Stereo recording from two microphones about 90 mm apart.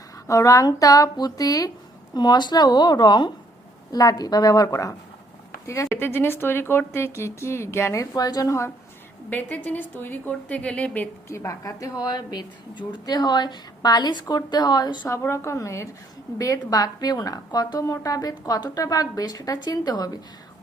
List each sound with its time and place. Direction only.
0.3 s a woman's voice: 40° left (ahead or behind); by 3.3 s 60° left (ahead or behind)
3.9 s a woman's voice: 45° left (ahead or behind)
8.1 s a woman's voice: 45° left (ahead or behind)
9.3 s a woman's voice: 20° left (ahead or behind)
11.3 s a woman's voice: 35° left (ahead or behind); by 15.0 s 50° left (ahead or behind)
15.0 s a woman's voice: 35° left (ahead or behind)